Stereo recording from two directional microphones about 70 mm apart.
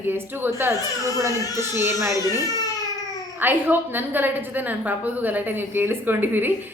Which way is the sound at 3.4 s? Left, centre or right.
Right.